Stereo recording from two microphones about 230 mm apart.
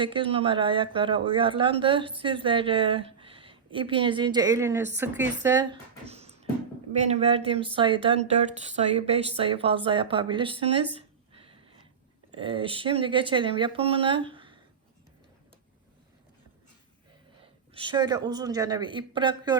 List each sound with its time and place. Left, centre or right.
0.0 s speech: right
6.1 s music: right
6.9 s speech: right
12.3 s speech: right
17.7 s speech: centre